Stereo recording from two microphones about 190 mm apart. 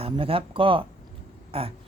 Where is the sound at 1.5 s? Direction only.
30° right (ahead or behind).